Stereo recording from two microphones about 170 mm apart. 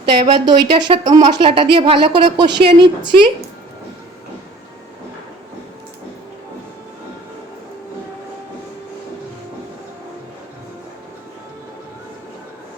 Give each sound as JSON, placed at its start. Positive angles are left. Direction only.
{"t": 0.0, "sound": "speech", "side_deg": -25}